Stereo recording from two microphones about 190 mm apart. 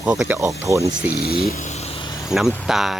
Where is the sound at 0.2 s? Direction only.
5° right (ahead or behind).